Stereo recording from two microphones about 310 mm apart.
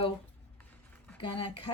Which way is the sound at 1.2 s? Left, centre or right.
Centre.